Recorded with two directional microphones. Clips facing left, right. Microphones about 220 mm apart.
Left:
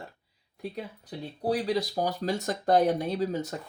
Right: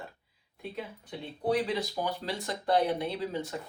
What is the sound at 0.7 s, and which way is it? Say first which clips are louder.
Speech: left 1 dB; 35° left (ahead or behind).